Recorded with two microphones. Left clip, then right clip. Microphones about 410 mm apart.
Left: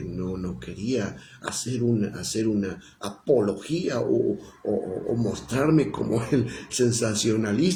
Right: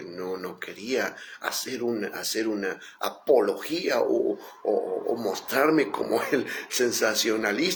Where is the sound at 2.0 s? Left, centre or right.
Left.